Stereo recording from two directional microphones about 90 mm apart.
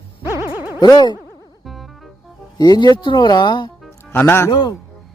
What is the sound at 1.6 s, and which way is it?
Music, centre (ahead or behind).